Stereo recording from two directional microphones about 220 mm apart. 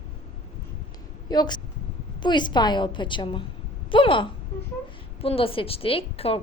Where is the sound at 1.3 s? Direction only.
20° left (ahead or behind).